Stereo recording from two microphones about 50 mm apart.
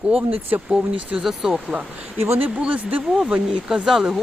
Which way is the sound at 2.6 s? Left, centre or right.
Right.